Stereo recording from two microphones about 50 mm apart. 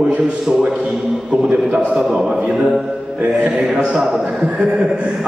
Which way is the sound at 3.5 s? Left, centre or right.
Centre.